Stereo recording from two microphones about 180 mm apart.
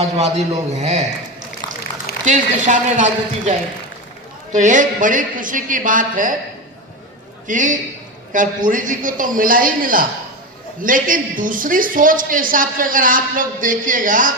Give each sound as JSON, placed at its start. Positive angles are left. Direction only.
{"t": 0.0, "sound": "speech", "side_deg": -35}
{"t": 2.2, "sound": "speech", "side_deg": -45}
{"t": 4.5, "sound": "a woman's voice", "side_deg": -45}
{"t": 7.4, "sound": "a woman's voice", "side_deg": -45}